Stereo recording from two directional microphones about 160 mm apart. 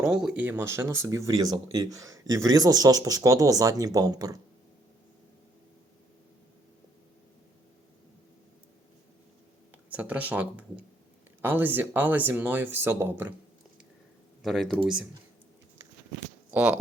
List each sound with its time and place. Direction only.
0.0 s speech: 5° right (ahead or behind); by 4.4 s 25° right (ahead or behind)
9.7 s speech: 10° right (ahead or behind)
14.4 s speech: centre (ahead or behind)
16.5 s speech: 10° right (ahead or behind)